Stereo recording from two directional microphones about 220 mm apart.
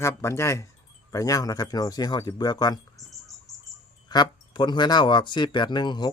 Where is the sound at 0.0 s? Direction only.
10° left (ahead or behind).